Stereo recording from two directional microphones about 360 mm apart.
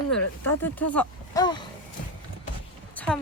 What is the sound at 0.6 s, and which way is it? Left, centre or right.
Speech, centre.